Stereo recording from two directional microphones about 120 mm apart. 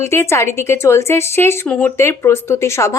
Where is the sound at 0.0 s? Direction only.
20° left (ahead or behind).